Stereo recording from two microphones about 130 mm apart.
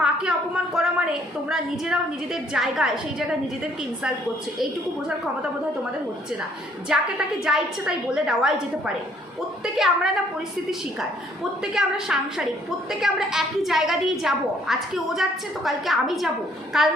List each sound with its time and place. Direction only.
0.0 s a woman's voice: 5° right (ahead or behind)
4.6 s a woman's voice: 5° right (ahead or behind)
6.8 s a woman's voice: 5° right (ahead or behind)
11.6 s a woman's voice: 5° right (ahead or behind)